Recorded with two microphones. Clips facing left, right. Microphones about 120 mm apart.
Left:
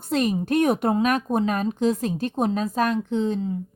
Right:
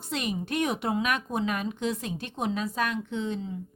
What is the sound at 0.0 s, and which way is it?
A woman's voice, 40° left (ahead or behind).